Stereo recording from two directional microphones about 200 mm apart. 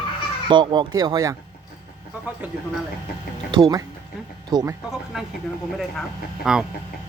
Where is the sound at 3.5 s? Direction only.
20° right (ahead or behind).